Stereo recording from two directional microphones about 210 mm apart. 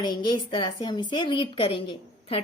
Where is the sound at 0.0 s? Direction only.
20° left (ahead or behind).